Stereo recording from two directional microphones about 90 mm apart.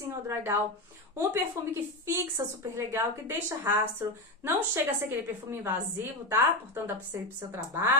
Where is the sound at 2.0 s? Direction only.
30° right (ahead or behind).